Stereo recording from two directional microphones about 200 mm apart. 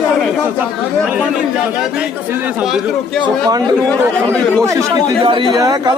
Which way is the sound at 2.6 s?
5° right (ahead or behind).